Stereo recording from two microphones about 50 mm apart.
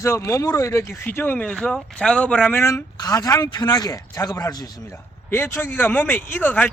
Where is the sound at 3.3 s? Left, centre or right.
Left.